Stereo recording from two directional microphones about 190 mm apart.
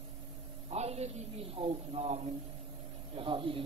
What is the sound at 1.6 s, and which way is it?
A man's voice, 30° right (ahead or behind).